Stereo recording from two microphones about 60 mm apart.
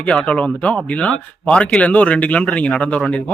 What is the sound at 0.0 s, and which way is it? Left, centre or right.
Speech, centre.